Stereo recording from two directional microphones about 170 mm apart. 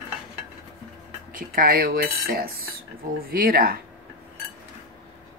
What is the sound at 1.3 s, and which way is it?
Cutlery, 60° right (ahead or behind).